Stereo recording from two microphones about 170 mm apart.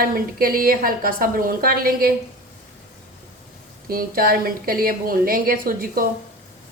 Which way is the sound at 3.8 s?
60° right (ahead or behind).